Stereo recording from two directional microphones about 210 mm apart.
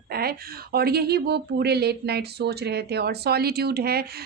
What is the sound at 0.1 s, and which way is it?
Speech, 45° right (ahead or behind).